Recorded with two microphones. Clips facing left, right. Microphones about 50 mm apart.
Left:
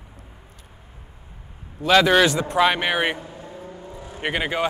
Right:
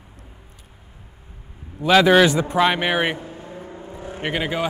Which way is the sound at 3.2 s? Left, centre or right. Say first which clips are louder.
Right 2 dB; right.